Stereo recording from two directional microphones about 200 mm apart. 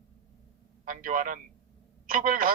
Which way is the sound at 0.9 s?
40° right (ahead or behind).